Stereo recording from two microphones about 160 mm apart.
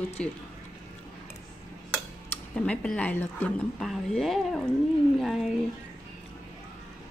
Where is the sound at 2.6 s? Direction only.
5° left (ahead or behind).